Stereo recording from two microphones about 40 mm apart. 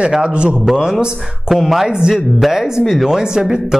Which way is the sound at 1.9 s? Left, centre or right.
Right.